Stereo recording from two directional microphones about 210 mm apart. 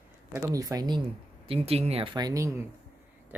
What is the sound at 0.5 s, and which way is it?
Speech, 15° right (ahead or behind).